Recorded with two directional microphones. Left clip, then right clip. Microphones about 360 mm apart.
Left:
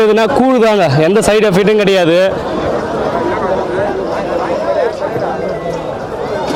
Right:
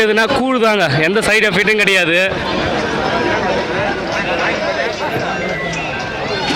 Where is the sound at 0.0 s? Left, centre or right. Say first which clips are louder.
Left 4 dB; centre.